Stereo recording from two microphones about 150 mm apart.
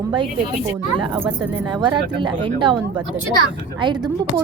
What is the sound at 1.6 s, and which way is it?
Speech, 30° right (ahead or behind).